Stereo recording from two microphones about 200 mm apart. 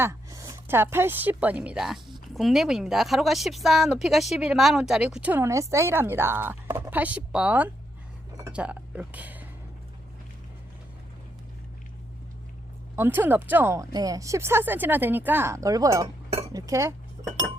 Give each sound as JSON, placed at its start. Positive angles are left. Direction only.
{"t": 0.0, "sound": "a woman's voice", "side_deg": -15}
{"t": 13.0, "sound": "speech", "side_deg": -10}